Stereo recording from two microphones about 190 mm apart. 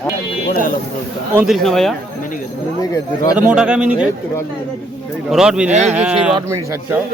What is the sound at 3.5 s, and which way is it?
Speech, 5° right (ahead or behind).